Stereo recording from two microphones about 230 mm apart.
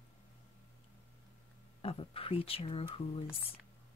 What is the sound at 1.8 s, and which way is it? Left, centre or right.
Speech, left.